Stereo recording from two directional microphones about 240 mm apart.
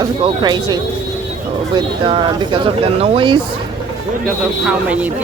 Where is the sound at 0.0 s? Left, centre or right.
Centre.